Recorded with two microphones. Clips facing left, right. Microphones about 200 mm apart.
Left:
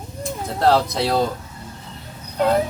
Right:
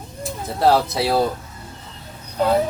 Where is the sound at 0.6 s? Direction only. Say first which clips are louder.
Right 1 dB; 5° right (ahead or behind).